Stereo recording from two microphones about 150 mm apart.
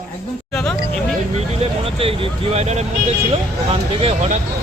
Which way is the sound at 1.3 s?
40° right (ahead or behind).